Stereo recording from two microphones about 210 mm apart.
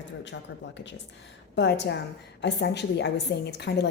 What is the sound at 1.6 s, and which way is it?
A woman's voice, 55° left (ahead or behind).